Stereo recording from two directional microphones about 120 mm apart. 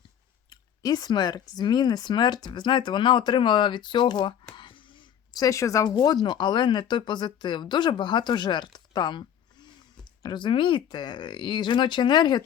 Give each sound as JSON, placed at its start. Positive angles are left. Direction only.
{"t": 0.5, "sound": "speech", "side_deg": 35}
{"t": 4.5, "sound": "a sound", "side_deg": 45}
{"t": 5.4, "sound": "speech", "side_deg": 25}